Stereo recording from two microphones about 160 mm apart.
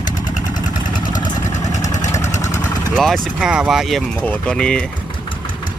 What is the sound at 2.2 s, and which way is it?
Vehicle, 45° left (ahead or behind).